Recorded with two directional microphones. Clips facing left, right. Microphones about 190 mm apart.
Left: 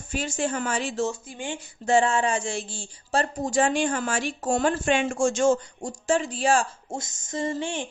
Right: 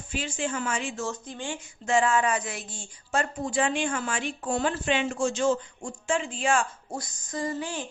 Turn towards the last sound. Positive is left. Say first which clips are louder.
# left 3 dB
turn(degrees=25)  # may be behind; listen again after turning